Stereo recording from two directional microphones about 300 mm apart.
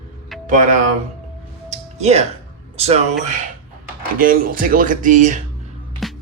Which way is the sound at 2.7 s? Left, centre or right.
Right.